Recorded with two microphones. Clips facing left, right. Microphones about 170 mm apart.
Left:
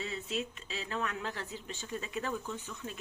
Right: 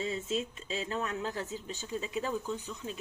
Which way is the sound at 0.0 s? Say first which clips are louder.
Right 4 dB; 35° right (ahead or behind).